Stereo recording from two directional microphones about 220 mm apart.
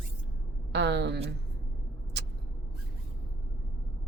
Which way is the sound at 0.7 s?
50° right (ahead or behind).